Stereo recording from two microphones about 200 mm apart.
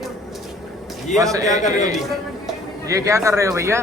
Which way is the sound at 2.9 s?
15° right (ahead or behind).